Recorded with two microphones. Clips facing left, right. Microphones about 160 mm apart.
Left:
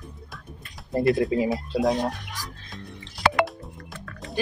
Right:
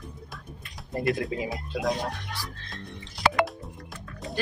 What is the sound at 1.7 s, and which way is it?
Speech, 30° left (ahead or behind).